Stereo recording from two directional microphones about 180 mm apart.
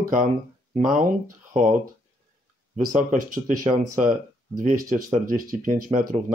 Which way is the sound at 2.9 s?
45° right (ahead or behind).